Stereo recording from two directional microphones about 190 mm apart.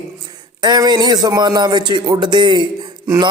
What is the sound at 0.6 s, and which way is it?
A man's voice, 20° right (ahead or behind).